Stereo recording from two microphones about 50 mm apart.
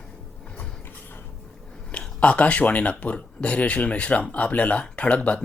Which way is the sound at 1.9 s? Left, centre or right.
Left.